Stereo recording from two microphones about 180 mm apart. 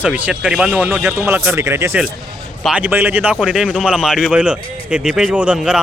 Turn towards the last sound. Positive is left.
turn(degrees=-5)  # may be behind; listen again after turning